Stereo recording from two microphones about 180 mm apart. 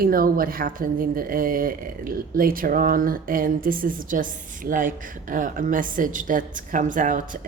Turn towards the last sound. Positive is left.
turn(degrees=-45)  # may be behind; listen again after turning